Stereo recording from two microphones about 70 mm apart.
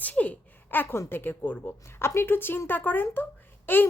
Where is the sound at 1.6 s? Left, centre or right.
Left.